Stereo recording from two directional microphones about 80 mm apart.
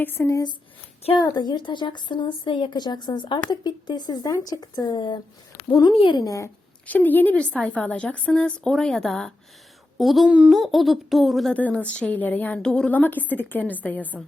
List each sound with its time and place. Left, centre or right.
0.0 s a woman's voice: left
1.2 s a woman's voice: left
3.5 s speech: left
5.6 s speech: left
6.2 s speech: left
6.8 s a woman's voice: left; by 11.5 s centre
11.5 s a woman's voice: centre
12.9 s a woman's voice: left